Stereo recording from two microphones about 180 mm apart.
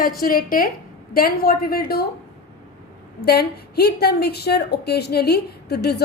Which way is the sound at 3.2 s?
60° left (ahead or behind).